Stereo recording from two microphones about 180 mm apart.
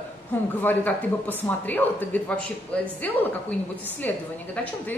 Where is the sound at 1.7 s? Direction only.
10° left (ahead or behind).